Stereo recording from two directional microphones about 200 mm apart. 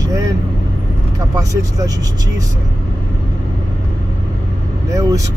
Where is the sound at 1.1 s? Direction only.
15° right (ahead or behind).